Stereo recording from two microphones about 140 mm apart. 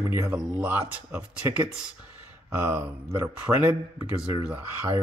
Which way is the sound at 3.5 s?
Centre (ahead or behind).